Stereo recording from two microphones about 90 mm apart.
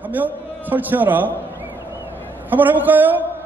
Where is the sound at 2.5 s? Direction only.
20° right (ahead or behind).